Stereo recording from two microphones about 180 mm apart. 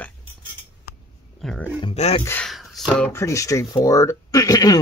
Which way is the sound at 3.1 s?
15° left (ahead or behind).